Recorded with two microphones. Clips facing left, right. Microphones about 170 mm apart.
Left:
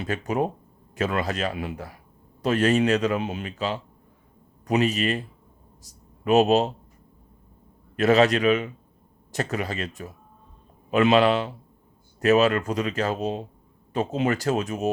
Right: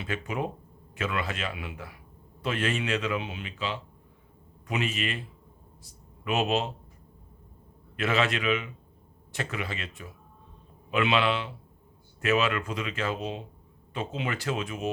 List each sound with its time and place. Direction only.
0.0 s speech: 40° left (ahead or behind)
7.9 s speech: 40° left (ahead or behind)